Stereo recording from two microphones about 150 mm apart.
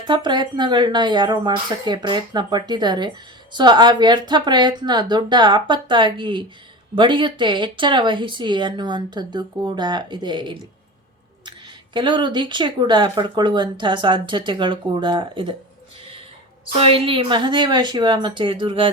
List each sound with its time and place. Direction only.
0.1 s speech: 30° right (ahead or behind)
11.9 s speech: 30° right (ahead or behind)
16.7 s speech: 40° right (ahead or behind)